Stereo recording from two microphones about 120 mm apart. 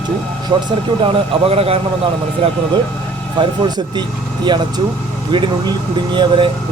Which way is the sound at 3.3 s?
40° right (ahead or behind).